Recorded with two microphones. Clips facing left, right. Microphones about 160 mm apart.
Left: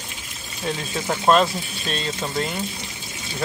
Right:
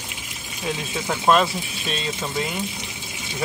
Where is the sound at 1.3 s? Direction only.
5° right (ahead or behind).